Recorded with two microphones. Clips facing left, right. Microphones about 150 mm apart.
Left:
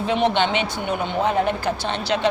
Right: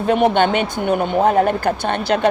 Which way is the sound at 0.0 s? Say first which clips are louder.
Right 5 dB; 50° right (ahead or behind).